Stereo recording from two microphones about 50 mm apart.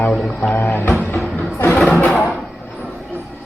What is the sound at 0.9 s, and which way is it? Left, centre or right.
Music, left.